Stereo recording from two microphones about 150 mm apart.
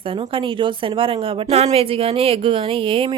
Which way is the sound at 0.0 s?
35° right (ahead or behind).